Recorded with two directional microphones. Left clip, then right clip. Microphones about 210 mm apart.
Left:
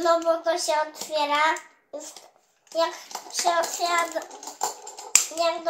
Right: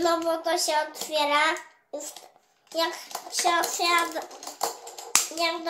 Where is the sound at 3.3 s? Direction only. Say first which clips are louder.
Left 1 dB; 35° right (ahead or behind).